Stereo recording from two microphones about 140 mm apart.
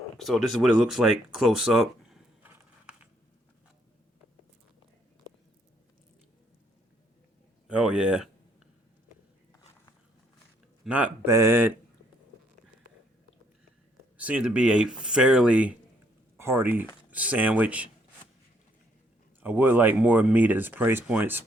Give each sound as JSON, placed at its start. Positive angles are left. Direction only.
{"t": 0.2, "sound": "speech", "side_deg": 0}
{"t": 2.4, "sound": "horse", "side_deg": -10}
{"t": 7.7, "sound": "speech", "side_deg": -5}
{"t": 10.8, "sound": "speech", "side_deg": -10}
{"t": 14.2, "sound": "speech", "side_deg": -10}
{"t": 19.4, "sound": "speech", "side_deg": -15}